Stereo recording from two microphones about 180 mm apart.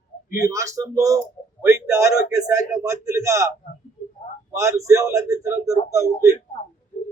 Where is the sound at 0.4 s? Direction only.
15° right (ahead or behind).